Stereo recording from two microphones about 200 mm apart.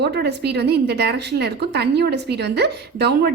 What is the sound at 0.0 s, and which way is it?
A woman's voice, 55° right (ahead or behind).